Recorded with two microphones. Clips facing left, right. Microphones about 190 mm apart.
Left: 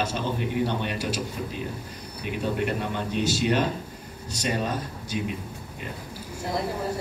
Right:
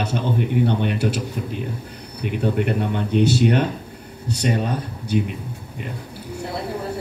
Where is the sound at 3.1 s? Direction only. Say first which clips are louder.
Right 7 dB; 60° right (ahead or behind).